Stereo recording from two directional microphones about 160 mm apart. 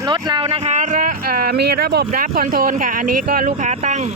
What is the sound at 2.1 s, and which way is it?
Speech, 60° right (ahead or behind).